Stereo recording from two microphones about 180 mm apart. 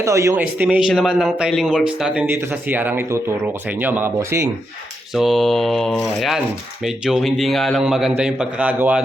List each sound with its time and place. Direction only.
0.0 s speech: 15° right (ahead or behind)
5.1 s a man's voice: centre (ahead or behind)